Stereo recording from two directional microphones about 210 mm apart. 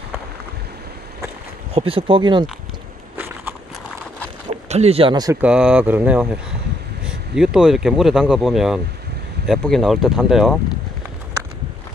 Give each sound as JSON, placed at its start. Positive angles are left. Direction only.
{"t": 1.7, "sound": "speech", "side_deg": -25}
{"t": 4.5, "sound": "speech", "side_deg": -30}
{"t": 5.4, "sound": "speech", "side_deg": -5}